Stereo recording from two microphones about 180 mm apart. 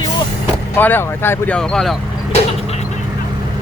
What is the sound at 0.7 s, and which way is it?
Speech, 10° left (ahead or behind).